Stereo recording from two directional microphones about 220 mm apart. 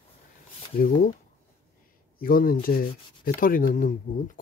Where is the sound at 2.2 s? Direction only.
40° left (ahead or behind).